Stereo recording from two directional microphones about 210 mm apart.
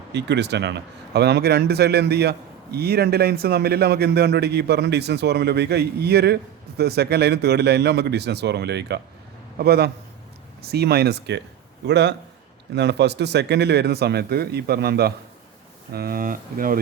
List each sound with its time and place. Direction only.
0.1 s a man's voice: 55° right (ahead or behind)